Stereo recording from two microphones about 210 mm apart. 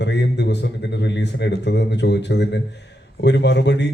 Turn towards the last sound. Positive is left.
turn(degrees=55)  # may be behind; listen again after turning